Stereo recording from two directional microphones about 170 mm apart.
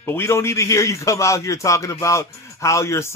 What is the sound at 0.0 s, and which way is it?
A man's voice, 15° left (ahead or behind).